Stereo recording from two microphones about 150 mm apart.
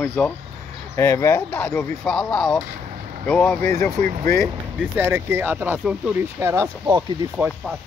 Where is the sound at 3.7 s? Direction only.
20° left (ahead or behind).